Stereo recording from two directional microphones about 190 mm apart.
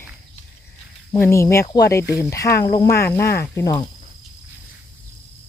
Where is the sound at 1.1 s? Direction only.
15° left (ahead or behind).